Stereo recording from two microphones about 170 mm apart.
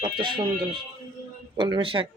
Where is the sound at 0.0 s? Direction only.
30° right (ahead or behind).